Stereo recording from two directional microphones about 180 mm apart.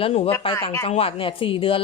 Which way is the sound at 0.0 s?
35° left (ahead or behind).